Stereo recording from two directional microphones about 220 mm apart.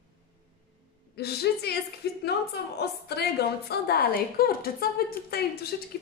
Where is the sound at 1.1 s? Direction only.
45° left (ahead or behind).